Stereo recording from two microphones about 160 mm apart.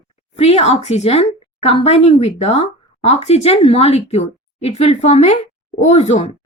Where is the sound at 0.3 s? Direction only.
40° left (ahead or behind).